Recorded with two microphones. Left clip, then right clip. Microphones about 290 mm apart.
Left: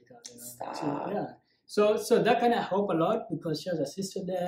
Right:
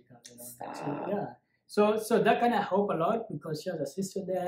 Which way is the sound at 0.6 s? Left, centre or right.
Centre.